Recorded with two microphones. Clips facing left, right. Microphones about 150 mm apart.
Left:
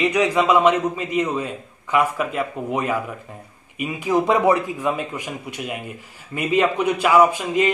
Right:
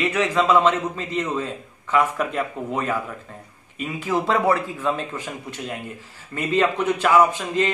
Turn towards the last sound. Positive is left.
turn(degrees=10)  # may be behind; listen again after turning